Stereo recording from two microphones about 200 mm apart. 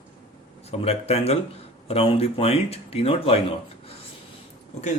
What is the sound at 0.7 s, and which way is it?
Speech, 30° left (ahead or behind).